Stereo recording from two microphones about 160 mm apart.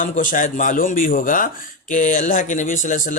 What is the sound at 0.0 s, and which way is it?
Speech, 55° left (ahead or behind).